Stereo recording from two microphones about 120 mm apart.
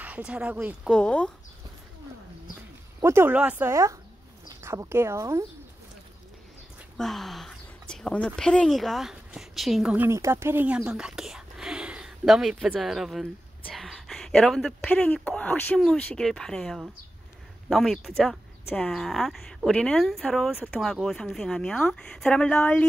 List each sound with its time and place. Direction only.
0.0 s speech: 10° right (ahead or behind)
0.8 s speech: 10° left (ahead or behind)
3.0 s speech: 20° right (ahead or behind)
7.0 s a sound: centre (ahead or behind)
8.4 s speech: 5° left (ahead or behind)
9.9 s speech: 20° right (ahead or behind); by 22.8 s 15° left (ahead or behind)